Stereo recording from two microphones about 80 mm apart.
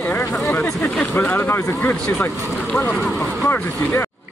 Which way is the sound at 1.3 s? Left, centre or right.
Left.